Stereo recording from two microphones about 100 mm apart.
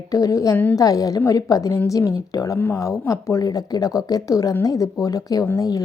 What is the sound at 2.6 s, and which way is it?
Speech, 20° left (ahead or behind).